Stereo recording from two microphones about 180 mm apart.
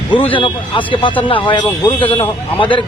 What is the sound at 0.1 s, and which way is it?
A man's voice, 30° left (ahead or behind).